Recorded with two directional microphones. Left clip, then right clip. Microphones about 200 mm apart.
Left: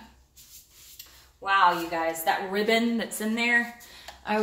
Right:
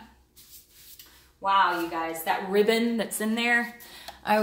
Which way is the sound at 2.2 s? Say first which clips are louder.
Right 2 dB; 30° right (ahead or behind).